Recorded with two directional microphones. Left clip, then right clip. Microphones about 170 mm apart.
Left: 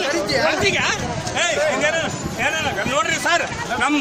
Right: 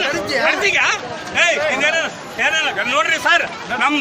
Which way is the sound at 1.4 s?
10° left (ahead or behind).